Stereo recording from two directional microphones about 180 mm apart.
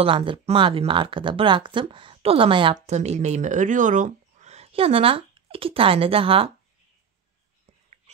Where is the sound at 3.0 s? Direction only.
40° right (ahead or behind).